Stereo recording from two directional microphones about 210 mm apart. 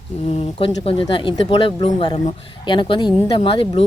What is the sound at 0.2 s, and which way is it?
Speech, 30° left (ahead or behind).